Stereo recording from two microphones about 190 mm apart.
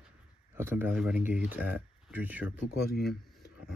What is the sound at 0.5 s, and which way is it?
Speech, 10° right (ahead or behind).